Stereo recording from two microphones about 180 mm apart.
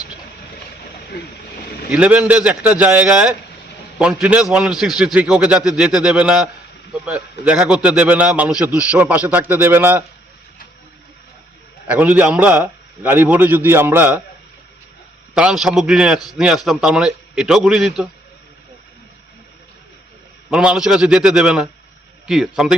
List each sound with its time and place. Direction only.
1.9 s a man's voice: 5° right (ahead or behind)
11.9 s a man's voice: 10° right (ahead or behind)
15.4 s a man's voice: 5° right (ahead or behind)
20.5 s a man's voice: 5° right (ahead or behind)